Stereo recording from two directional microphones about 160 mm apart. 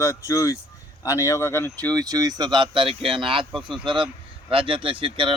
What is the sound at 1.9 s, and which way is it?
Speech, 25° right (ahead or behind).